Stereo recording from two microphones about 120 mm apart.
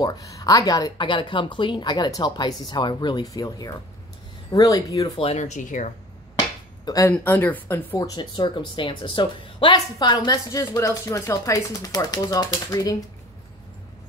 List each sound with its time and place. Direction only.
0.0 s speech: 30° left (ahead or behind)
5.2 s speech: 70° left (ahead or behind); by 5.9 s 90° left
6.8 s a sound: 30° left (ahead or behind)
7.1 s speech: 15° left (ahead or behind)
8.0 s speech: 35° left (ahead or behind)